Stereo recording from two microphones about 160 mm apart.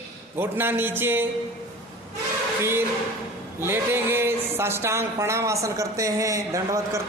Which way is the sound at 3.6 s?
15° right (ahead or behind).